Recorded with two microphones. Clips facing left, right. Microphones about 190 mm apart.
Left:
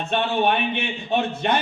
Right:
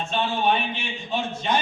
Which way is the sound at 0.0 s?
60° left (ahead or behind).